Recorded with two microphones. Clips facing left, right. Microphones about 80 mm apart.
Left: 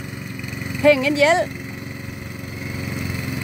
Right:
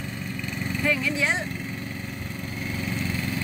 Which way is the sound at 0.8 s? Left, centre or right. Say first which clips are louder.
Left 12 dB; left.